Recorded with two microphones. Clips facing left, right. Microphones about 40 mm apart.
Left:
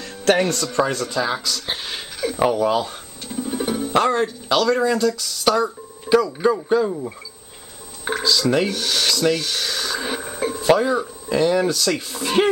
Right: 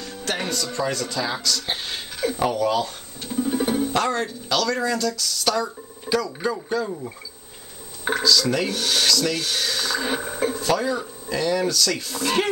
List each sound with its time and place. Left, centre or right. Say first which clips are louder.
0.0 s music: left 10 dB; left
0.7 s speech: left 5 dB; left
3.3 s music: right 1 dB; centre
3.9 s speech: left 5 dB; centre
8.2 s speech: left 2 dB; centre
8.6 s speech: left 1 dB; centre
9.0 s speech: left 4 dB; centre
9.4 s a sound: even; centre
10.5 s speech: left 8 dB; centre